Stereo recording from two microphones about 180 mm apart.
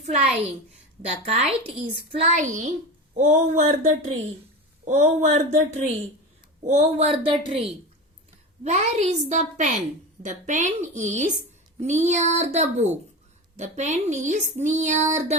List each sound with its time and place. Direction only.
1.1 s child singing: 35° right (ahead or behind)
2.3 s a woman's voice: 45° right (ahead or behind)
3.2 s child singing: 40° right (ahead or behind)
10.2 s a woman's voice: 45° right (ahead or behind)
11.8 s child singing: 40° right (ahead or behind)